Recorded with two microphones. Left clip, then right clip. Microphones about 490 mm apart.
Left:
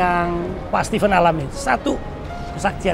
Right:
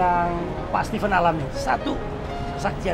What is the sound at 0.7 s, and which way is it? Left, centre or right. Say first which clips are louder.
Speech: left 5 dB; left.